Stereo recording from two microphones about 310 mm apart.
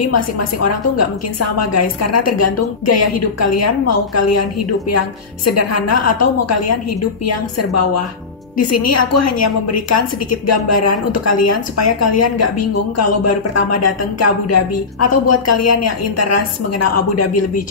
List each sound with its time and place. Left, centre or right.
0.0 s a woman's voice: left